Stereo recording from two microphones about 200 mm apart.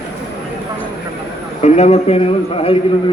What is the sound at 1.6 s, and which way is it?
A man's voice, 30° left (ahead or behind).